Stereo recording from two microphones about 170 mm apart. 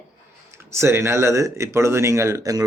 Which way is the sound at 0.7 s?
15° right (ahead or behind).